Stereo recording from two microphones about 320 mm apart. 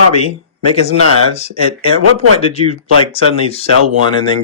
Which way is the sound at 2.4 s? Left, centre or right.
Centre.